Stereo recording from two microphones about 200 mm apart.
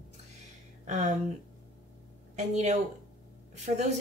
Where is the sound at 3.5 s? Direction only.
35° right (ahead or behind).